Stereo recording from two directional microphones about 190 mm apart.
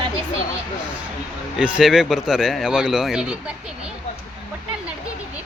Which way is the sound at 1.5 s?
5° right (ahead or behind).